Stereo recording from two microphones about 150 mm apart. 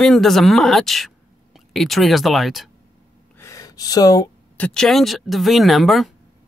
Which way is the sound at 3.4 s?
20° left (ahead or behind).